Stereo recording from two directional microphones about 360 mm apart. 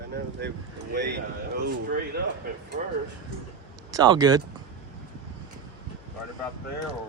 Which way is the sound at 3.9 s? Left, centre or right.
Centre.